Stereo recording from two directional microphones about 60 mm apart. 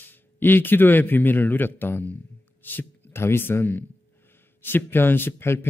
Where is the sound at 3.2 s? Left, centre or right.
Left.